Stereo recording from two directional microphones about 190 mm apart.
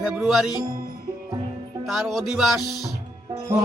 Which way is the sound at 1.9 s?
Centre (ahead or behind).